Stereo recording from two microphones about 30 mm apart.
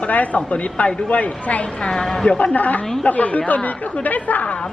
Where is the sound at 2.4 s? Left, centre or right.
Left.